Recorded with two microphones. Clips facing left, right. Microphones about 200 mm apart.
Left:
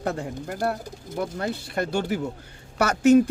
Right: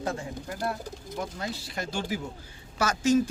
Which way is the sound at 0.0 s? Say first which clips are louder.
Left 4 dB; 60° left (ahead or behind).